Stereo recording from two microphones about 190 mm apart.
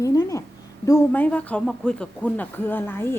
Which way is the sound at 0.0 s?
15° left (ahead or behind).